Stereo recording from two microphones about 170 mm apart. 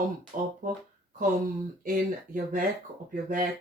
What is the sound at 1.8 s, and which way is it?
Speech, 55° right (ahead or behind).